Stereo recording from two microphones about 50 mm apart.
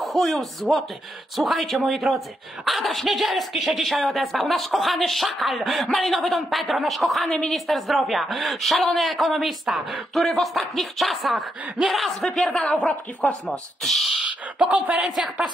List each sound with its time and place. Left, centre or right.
0.0 s speech: centre
7.2 s speech: centre
7.5 s speech: centre
12.7 s speech: left
13.5 s speech: centre
14.2 s speech: right
15.0 s speech: centre